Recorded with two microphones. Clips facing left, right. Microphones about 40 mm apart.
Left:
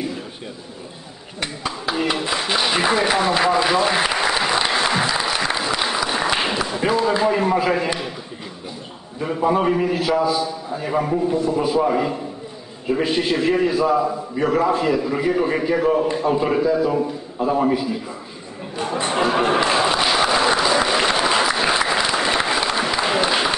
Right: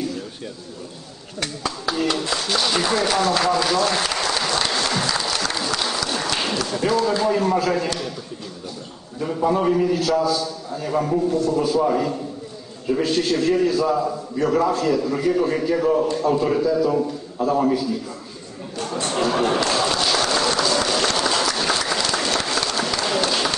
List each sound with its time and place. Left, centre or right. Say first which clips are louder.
1.4 s speech: even; left
9.2 s a man's voice: left 1 dB; left
18.8 s a sound: left 3 dB; left